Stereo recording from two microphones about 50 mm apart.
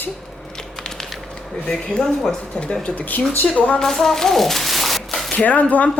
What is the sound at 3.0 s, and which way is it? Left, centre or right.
Speech, left.